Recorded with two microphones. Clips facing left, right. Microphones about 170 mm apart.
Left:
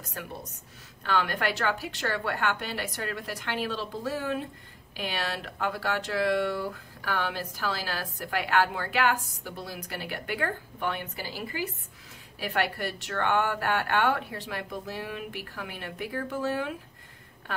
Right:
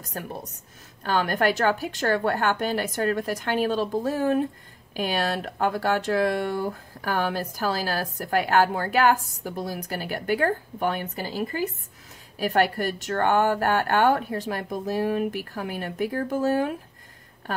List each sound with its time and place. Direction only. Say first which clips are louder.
1.0 s a woman's voice: right 5 dB; 45° right (ahead or behind)